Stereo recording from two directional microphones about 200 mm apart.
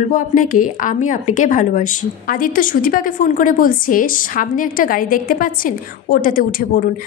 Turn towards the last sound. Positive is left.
turn(degrees=45)  # may be behind; listen again after turning